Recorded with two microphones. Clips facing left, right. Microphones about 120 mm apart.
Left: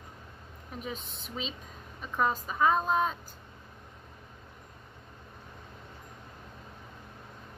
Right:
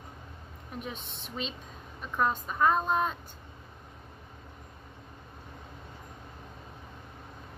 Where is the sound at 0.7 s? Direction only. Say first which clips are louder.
Left 1 dB; centre (ahead or behind).